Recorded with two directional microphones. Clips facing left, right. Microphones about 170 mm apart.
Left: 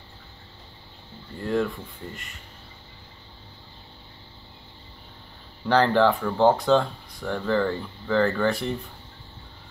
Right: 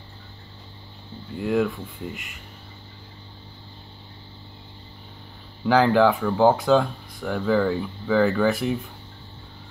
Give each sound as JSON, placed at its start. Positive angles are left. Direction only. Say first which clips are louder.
{"t": 1.4, "sound": "speech", "louder": "right 3 dB", "side_deg": -5}
{"t": 5.7, "sound": "speech", "louder": "right 2 dB", "side_deg": -5}